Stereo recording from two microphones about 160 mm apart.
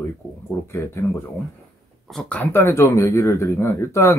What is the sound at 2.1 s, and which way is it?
Speech, 5° left (ahead or behind).